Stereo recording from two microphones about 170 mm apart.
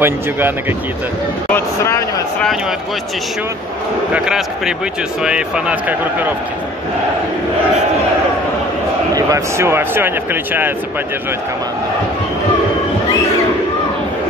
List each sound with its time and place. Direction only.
0.0 s speech: 10° right (ahead or behind)
1.5 s a sound: 15° left (ahead or behind)
4.1 s speech: 5° right (ahead or behind)
9.1 s speech: 15° right (ahead or behind)